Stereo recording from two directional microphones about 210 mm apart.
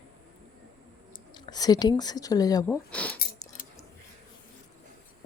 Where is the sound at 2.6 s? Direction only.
5° left (ahead or behind).